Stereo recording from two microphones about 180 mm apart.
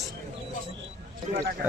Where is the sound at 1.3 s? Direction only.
40° right (ahead or behind).